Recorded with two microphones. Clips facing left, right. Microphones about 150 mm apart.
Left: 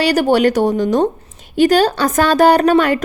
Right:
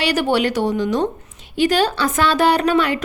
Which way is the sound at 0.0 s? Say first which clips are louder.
Left 5 dB; 40° left (ahead or behind).